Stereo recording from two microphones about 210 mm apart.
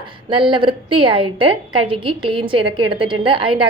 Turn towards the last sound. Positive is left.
turn(degrees=-25)  # may be behind; listen again after turning